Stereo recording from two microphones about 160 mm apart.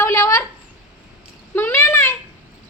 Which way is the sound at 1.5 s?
15° left (ahead or behind).